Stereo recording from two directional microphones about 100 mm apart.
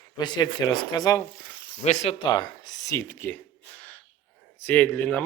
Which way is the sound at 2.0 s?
65° left (ahead or behind).